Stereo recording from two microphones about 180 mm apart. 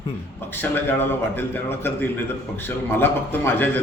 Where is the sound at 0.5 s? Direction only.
10° left (ahead or behind).